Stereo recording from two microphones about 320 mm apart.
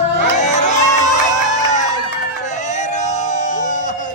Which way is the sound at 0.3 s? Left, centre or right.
Left.